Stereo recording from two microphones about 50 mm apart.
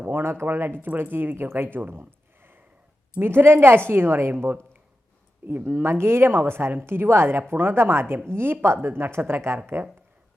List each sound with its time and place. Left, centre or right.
0.1 s a woman's voice: right
2.4 s a sound: right
3.2 s a woman's voice: right